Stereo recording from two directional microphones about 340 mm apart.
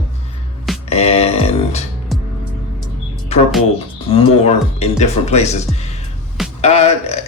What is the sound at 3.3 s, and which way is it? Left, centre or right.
Speech, centre.